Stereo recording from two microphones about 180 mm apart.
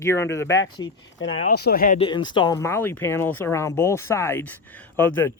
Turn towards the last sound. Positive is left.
turn(degrees=10)  # may be behind; listen again after turning